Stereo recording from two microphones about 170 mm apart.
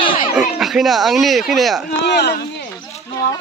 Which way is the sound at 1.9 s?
80° left.